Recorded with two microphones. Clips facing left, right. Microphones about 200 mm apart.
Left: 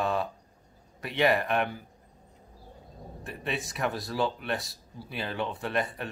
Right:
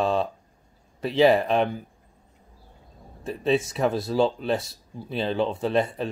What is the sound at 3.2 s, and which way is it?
Speech, 25° right (ahead or behind).